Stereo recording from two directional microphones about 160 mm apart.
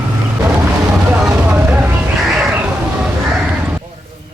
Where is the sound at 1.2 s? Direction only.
10° right (ahead or behind).